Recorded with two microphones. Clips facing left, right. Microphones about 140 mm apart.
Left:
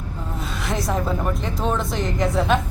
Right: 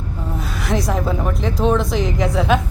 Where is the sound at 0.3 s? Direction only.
Centre (ahead or behind).